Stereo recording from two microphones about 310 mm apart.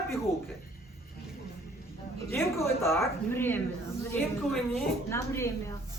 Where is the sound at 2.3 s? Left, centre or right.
Centre.